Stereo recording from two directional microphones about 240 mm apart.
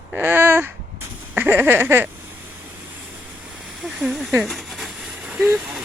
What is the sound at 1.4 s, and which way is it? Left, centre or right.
Speech, centre.